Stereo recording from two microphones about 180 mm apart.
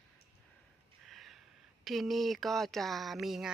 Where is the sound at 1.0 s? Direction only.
Centre (ahead or behind).